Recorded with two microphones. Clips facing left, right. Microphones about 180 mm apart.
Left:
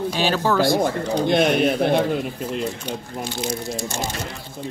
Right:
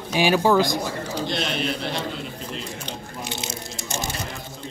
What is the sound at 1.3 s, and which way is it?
Speech, 55° left (ahead or behind).